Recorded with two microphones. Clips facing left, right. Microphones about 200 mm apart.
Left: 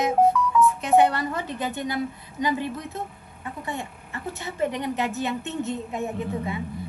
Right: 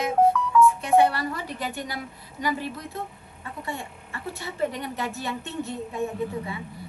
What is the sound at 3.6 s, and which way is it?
A woman's voice, 20° left (ahead or behind).